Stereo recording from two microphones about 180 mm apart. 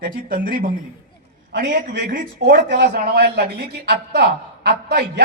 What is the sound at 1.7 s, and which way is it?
Speech, 60° right (ahead or behind).